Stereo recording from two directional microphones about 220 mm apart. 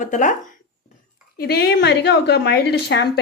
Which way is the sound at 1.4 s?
45° left (ahead or behind).